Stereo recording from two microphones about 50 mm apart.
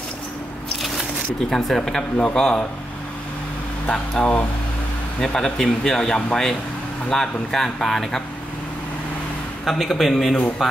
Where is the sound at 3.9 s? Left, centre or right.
Centre.